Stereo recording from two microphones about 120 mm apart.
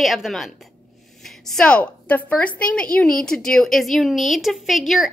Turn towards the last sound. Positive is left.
turn(degrees=0)  # may be behind; listen again after turning